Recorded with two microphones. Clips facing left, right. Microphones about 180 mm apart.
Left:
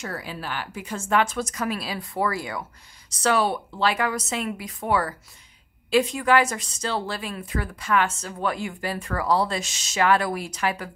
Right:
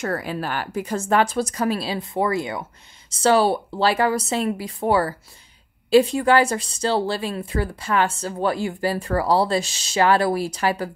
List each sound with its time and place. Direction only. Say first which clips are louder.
0.0 s a woman's voice: right 7 dB; 55° right (ahead or behind); by 10.9 s 35° right (ahead or behind)